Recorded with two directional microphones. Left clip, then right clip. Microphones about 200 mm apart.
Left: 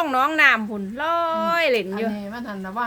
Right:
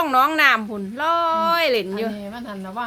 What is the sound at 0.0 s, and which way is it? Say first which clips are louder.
Speech: right 1 dB; 20° right (ahead or behind).